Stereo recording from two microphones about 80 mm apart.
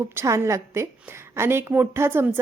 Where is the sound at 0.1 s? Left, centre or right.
Right.